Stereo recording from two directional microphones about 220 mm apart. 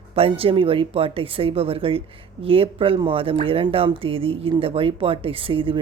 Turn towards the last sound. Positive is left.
turn(degrees=-25)  # may be behind; listen again after turning